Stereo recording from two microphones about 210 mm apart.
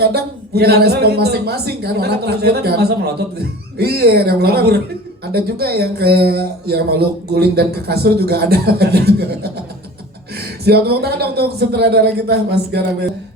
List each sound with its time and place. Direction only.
0.0 s speech: 50° right (ahead or behind)